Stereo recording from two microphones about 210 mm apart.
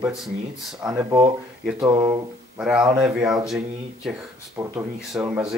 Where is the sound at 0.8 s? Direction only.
15° right (ahead or behind).